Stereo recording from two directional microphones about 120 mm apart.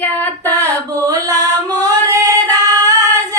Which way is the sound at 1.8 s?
30° right (ahead or behind).